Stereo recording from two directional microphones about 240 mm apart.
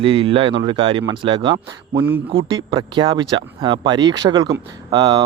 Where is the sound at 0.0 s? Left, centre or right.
Right.